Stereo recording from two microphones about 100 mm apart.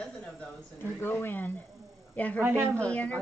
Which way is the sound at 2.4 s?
25° right (ahead or behind).